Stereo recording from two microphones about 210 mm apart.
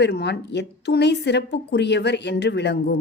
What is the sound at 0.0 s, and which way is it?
Speech, 50° left (ahead or behind).